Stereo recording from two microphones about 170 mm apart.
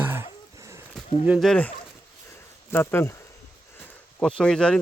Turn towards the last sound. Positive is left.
turn(degrees=5)  # may be behind; listen again after turning